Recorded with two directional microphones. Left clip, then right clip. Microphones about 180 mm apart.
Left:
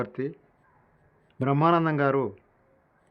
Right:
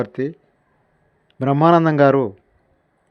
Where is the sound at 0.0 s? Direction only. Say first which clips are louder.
Right 8 dB; 40° right (ahead or behind).